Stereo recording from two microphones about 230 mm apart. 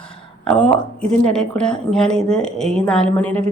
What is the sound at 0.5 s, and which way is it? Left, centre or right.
Speech, centre.